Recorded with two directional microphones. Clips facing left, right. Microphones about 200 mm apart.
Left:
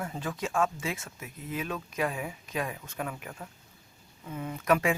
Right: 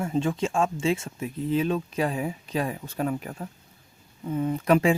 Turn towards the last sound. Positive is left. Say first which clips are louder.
# right 6 dB
turn(degrees=-30)  # may be behind; listen again after turning